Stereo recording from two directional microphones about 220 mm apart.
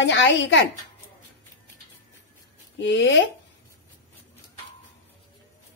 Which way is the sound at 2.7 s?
55° left (ahead or behind).